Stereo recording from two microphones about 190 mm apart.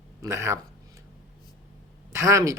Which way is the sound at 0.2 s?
15° right (ahead or behind).